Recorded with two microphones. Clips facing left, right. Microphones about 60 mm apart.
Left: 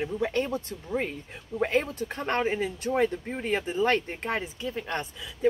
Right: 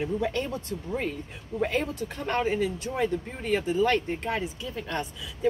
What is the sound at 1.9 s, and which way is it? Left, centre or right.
Speech, left.